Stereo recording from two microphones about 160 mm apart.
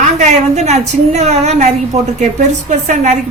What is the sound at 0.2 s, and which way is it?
A woman's voice, 45° right (ahead or behind).